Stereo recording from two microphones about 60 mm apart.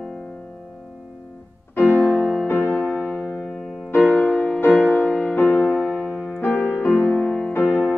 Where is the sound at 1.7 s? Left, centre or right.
Left.